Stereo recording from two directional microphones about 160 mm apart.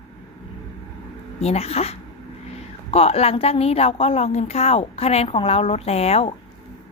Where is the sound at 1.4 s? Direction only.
40° left (ahead or behind).